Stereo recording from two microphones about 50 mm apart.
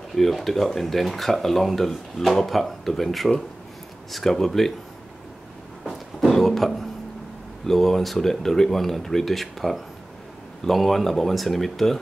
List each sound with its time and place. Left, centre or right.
0.1 s speech: centre
6.2 s a sound: centre
7.6 s speech: centre